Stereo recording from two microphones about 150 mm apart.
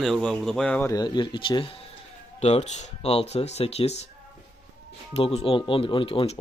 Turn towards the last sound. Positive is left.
turn(degrees=40)  # may be behind; listen again after turning